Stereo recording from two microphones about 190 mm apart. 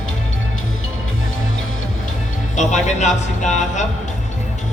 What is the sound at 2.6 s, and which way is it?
Music, 40° left (ahead or behind).